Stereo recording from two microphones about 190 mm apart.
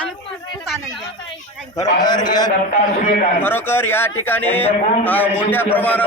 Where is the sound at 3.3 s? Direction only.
10° left (ahead or behind).